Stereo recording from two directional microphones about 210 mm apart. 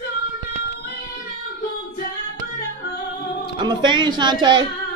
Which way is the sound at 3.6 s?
20° right (ahead or behind).